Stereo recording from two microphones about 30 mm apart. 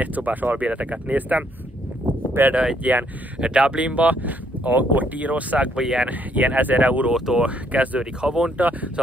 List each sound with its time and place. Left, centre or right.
0.0 s speech: right
0.7 s speech: right
2.4 s speech: right
2.8 s speech: right
3.3 s speech: right
5.8 s speech: right
6.0 s speech: right
7.3 s speech: centre
7.7 s speech: right
8.0 s speech: right
8.5 s speech: right